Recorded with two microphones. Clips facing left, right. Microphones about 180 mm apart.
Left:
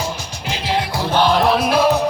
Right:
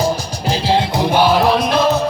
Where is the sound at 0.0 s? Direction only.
35° right (ahead or behind).